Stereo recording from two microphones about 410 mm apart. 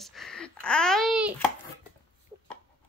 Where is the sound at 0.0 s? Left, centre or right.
Centre.